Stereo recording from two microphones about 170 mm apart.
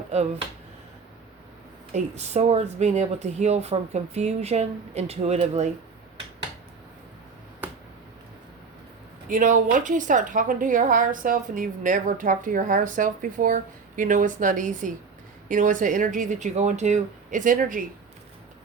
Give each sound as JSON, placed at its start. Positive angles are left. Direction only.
{"t": 0.1, "sound": "speech", "side_deg": -40}
{"t": 1.9, "sound": "speech", "side_deg": -40}
{"t": 9.3, "sound": "a woman's voice", "side_deg": -50}